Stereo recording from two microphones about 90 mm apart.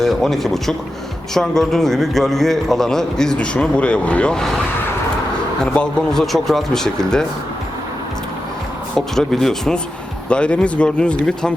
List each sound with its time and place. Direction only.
0.0 s a man's voice: centre (ahead or behind)
5.7 s a man's voice: 10° left (ahead or behind)
9.0 s a man's voice: 5° left (ahead or behind)